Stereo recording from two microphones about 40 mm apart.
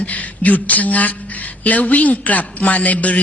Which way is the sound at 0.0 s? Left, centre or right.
Left.